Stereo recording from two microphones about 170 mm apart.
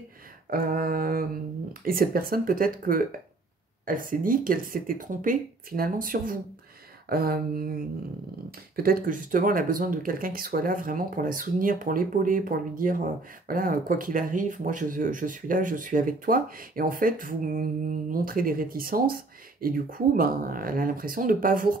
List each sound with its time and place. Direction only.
0.5 s speech: 60° right (ahead or behind)